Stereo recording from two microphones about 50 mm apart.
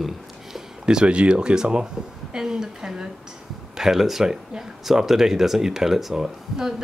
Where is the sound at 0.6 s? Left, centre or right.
Centre.